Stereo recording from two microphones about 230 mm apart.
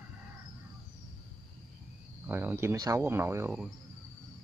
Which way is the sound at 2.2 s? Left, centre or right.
Centre.